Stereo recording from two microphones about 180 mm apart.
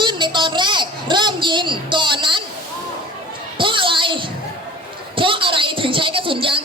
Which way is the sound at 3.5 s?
30° right (ahead or behind).